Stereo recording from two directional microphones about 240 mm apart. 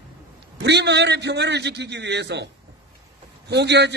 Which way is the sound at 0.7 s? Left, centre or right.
Right.